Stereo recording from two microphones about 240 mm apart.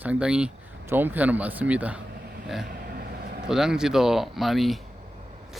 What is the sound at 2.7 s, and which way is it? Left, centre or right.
Vehicle, right.